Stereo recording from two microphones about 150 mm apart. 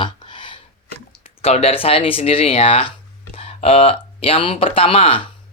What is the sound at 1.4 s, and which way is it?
Speech, 45° left (ahead or behind).